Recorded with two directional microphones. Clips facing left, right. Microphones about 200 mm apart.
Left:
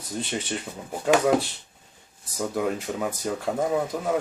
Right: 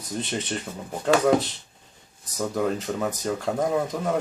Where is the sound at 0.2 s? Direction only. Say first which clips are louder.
Even; 5° left (ahead or behind).